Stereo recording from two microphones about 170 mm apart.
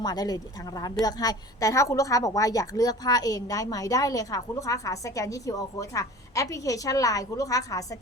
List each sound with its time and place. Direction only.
0.0 s a woman's voice: 20° left (ahead or behind)